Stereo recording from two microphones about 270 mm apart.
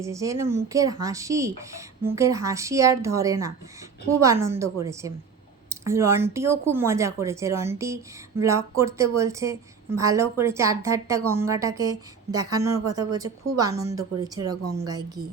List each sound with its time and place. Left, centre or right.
0.0 s speech: centre
14.5 s speech: right
14.8 s speech: centre